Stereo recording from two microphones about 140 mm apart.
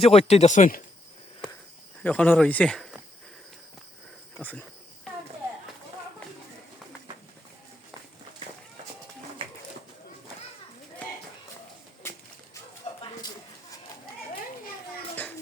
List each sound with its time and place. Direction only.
0.0 s speech: 45° left (ahead or behind)
2.0 s speech: 10° left (ahead or behind)
4.4 s speech: 10° left (ahead or behind)
13.0 s a sound: 30° left (ahead or behind)